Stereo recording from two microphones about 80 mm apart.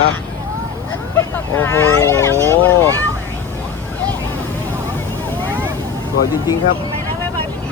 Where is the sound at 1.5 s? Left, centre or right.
Left.